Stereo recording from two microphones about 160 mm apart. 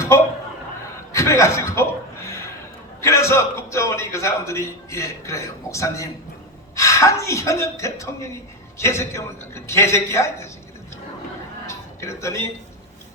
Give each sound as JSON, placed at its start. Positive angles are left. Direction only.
{"t": 1.1, "sound": "chuckle", "side_deg": 20}
{"t": 3.0, "sound": "a man's voice", "side_deg": 20}
{"t": 11.6, "sound": "music", "side_deg": 20}